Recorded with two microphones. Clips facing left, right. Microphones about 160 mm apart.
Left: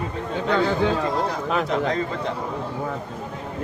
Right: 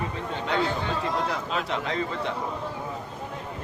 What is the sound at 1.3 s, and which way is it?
A man's voice, 40° left (ahead or behind).